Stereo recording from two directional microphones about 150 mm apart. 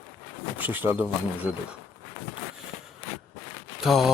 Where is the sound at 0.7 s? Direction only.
10° right (ahead or behind).